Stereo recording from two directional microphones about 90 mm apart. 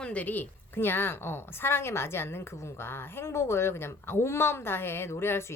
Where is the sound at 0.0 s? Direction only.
15° left (ahead or behind).